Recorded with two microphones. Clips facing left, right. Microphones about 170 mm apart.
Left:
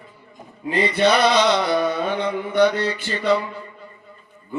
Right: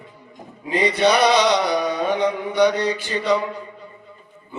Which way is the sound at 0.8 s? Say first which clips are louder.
Right 1 dB; 15° right (ahead or behind).